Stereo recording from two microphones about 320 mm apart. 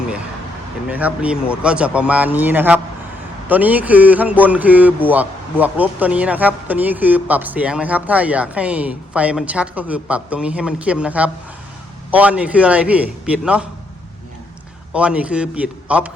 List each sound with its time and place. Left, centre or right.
0.9 s speech: centre
14.9 s speech: centre